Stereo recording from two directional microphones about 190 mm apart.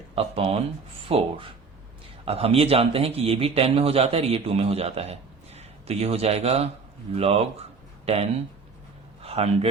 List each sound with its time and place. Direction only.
0.2 s a man's voice: 30° right (ahead or behind)